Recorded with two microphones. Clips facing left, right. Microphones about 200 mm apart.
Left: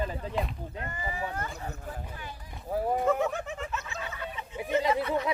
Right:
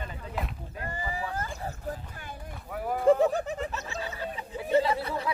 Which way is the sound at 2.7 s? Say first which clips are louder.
Left 4 dB; 25° left (ahead or behind).